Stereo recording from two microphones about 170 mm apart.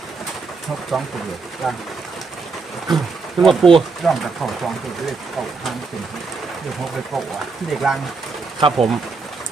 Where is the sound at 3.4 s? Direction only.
Centre (ahead or behind).